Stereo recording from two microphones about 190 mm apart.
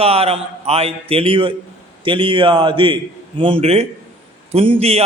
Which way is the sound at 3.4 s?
30° right (ahead or behind).